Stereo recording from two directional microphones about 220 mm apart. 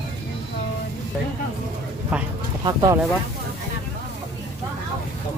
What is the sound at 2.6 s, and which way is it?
Speech, 15° right (ahead or behind).